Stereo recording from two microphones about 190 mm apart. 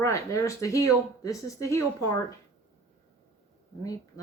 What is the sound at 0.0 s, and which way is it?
Speech, 15° left (ahead or behind).